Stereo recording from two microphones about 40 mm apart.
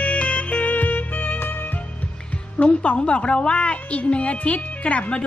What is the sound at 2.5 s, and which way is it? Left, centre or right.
Music, left.